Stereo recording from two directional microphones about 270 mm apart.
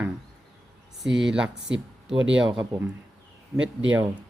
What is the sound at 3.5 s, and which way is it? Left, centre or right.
Speech, right.